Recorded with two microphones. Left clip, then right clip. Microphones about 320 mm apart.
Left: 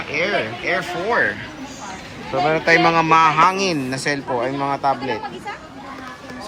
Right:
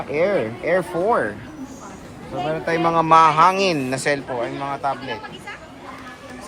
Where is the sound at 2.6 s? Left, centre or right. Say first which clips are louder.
Left 3 dB; centre.